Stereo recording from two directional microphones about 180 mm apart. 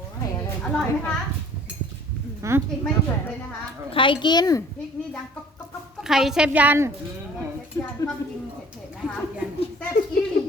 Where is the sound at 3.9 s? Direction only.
30° left (ahead or behind).